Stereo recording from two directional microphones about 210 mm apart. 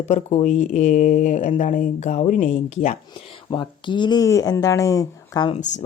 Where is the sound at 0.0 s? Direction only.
30° left (ahead or behind).